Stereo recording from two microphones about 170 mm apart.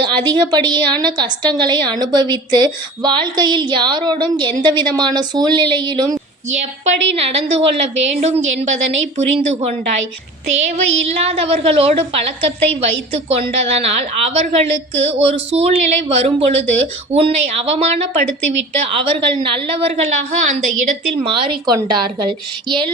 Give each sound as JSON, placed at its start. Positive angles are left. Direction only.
{"t": 0.0, "sound": "a woman's voice", "side_deg": -25}
{"t": 7.2, "sound": "speech", "side_deg": -35}
{"t": 21.2, "sound": "a woman's voice", "side_deg": -30}